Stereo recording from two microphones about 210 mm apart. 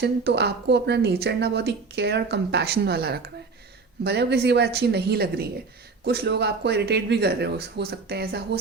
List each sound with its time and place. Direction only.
0.0 s a woman's voice: 55° right (ahead or behind)